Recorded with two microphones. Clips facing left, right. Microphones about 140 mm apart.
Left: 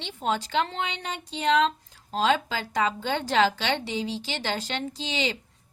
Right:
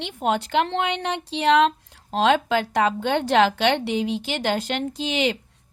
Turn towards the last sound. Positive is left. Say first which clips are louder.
# right 6 dB
turn(degrees=-55)  # may be behind; listen again after turning